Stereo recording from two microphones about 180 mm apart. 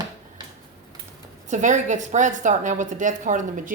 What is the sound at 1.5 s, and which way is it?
A woman's voice, 40° right (ahead or behind).